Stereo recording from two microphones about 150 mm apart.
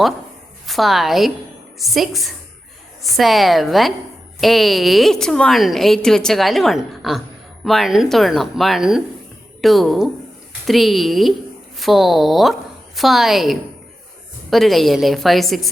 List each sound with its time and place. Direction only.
0.7 s a woman's voice: centre (ahead or behind)